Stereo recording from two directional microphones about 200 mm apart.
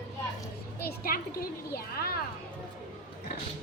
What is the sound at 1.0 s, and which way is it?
A woman's voice, 50° left (ahead or behind).